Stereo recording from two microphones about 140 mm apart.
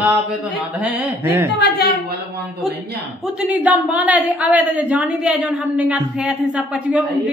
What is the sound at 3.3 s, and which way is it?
A woman's voice, 10° right (ahead or behind).